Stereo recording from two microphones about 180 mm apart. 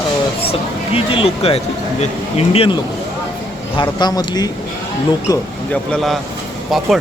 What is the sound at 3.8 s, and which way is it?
Speech, 25° left (ahead or behind).